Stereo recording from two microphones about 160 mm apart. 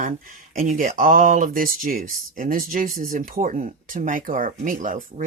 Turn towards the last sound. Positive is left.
turn(degrees=-55)  # may be behind; listen again after turning